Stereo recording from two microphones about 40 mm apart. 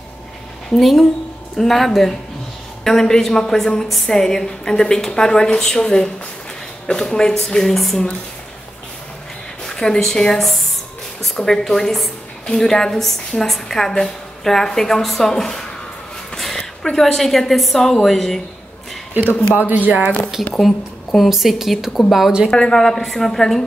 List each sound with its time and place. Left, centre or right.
0.7 s a woman's voice: centre
9.7 s a woman's voice: centre
16.5 s a sound: centre
17.0 s a woman's voice: centre
19.6 s speech: right
20.6 s a woman's voice: centre
22.5 s a woman's voice: centre